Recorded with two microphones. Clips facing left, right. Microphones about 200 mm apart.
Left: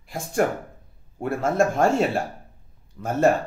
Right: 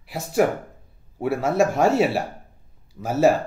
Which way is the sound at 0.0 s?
5° right (ahead or behind).